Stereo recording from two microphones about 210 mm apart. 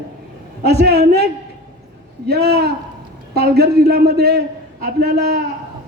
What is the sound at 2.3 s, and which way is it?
A man's voice, 50° right (ahead or behind).